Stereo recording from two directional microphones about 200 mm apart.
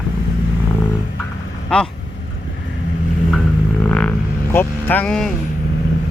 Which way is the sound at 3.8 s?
10° left (ahead or behind).